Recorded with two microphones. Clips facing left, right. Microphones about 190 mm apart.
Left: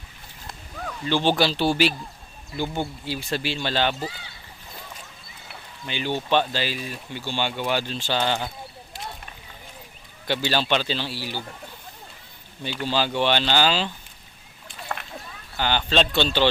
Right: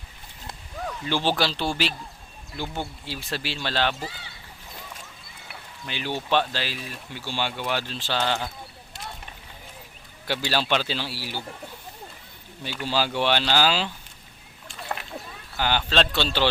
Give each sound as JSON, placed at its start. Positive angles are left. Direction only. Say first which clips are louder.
{"t": 1.0, "sound": "speech", "louder": "left 4 dB", "side_deg": -5}
{"t": 5.5, "sound": "a sound", "louder": "left 2 dB", "side_deg": 0}
{"t": 6.2, "sound": "speech", "louder": "left 1 dB", "side_deg": 5}
{"t": 10.2, "sound": "speech", "louder": "left 2 dB", "side_deg": -5}
{"t": 12.6, "sound": "speech", "louder": "left 1 dB", "side_deg": -5}
{"t": 15.5, "sound": "speech", "louder": "left 1 dB", "side_deg": -5}